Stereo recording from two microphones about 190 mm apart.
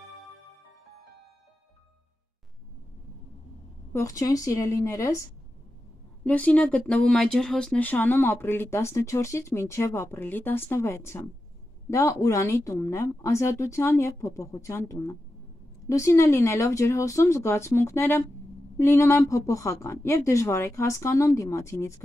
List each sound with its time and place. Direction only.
3.9 s speech: 15° left (ahead or behind)
6.2 s speech: 5° left (ahead or behind)